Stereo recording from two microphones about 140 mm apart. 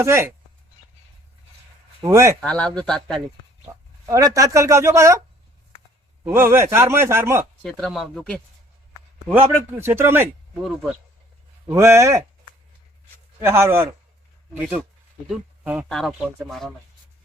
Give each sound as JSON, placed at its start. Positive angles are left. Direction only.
{"t": 0.0, "sound": "speech", "side_deg": -20}
{"t": 2.0, "sound": "speech", "side_deg": -20}
{"t": 2.4, "sound": "speech", "side_deg": 10}
{"t": 4.1, "sound": "speech", "side_deg": -25}
{"t": 6.2, "sound": "a man's voice", "side_deg": -15}
{"t": 7.6, "sound": "speech", "side_deg": 0}
{"t": 9.3, "sound": "a man's voice", "side_deg": -15}
{"t": 11.6, "sound": "speech", "side_deg": -20}
{"t": 13.4, "sound": "a man's voice", "side_deg": -20}
{"t": 15.3, "sound": "speech", "side_deg": -10}